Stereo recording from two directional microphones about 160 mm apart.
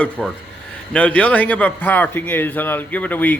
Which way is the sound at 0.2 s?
Centre (ahead or behind).